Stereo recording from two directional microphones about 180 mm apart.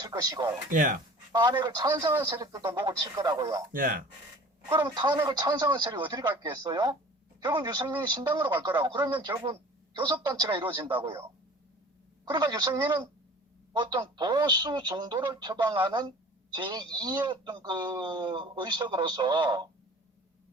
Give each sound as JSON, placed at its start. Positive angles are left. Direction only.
{"t": 0.0, "sound": "speech", "side_deg": -25}
{"t": 0.7, "sound": "speech", "side_deg": -45}
{"t": 1.3, "sound": "speech", "side_deg": -25}
{"t": 3.7, "sound": "speech", "side_deg": -50}
{"t": 4.7, "sound": "speech", "side_deg": -25}
{"t": 12.3, "sound": "speech", "side_deg": -20}